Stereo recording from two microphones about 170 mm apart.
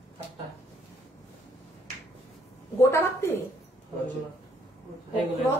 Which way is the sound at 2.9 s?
15° left (ahead or behind).